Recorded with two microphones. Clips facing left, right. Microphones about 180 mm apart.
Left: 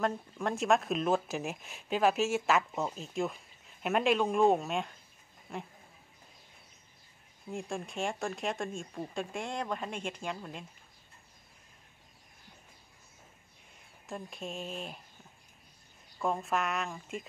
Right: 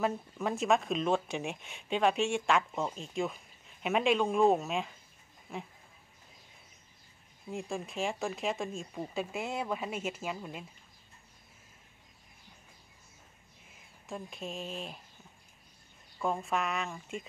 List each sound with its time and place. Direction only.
0.0 s speech: centre (ahead or behind)
7.4 s speech: centre (ahead or behind)
13.7 s speech: centre (ahead or behind)
16.2 s speech: centre (ahead or behind)